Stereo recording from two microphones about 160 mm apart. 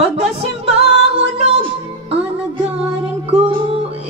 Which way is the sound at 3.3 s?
35° right (ahead or behind).